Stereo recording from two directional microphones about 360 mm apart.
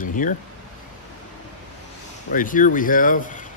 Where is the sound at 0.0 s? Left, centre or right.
Left.